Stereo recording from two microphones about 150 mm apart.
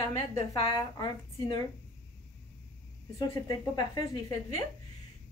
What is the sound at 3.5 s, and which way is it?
Speech, 30° left (ahead or behind).